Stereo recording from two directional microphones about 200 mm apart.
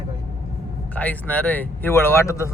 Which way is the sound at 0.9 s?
5° left (ahead or behind).